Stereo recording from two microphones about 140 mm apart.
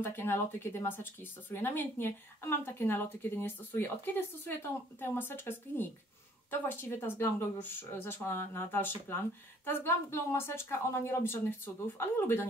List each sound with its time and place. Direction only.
0.0 s speech: 15° left (ahead or behind)